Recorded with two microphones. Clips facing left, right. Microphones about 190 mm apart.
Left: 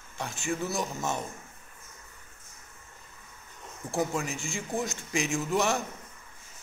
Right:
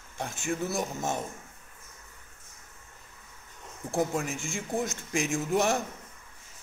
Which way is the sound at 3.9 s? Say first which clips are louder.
Right 1 dB; 50° right (ahead or behind).